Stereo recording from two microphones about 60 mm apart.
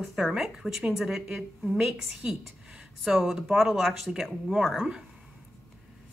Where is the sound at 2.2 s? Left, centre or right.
Right.